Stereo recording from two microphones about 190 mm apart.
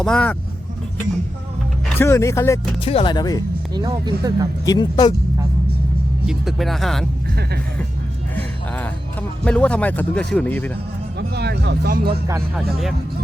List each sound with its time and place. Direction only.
0.0 s speech: 5° left (ahead or behind)
2.0 s speech: 15° left (ahead or behind)
2.8 s speech: 30° left (ahead or behind)
3.8 s speech: 20° right (ahead or behind)
4.6 s speech: 20° left (ahead or behind)
6.2 s speech: centre (ahead or behind)
8.4 s speech: 10° left (ahead or behind)
11.2 s speech: 60° right (ahead or behind)
12.5 s speech: centre (ahead or behind)